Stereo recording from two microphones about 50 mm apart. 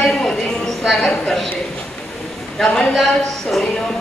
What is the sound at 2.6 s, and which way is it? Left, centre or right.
Speech, centre.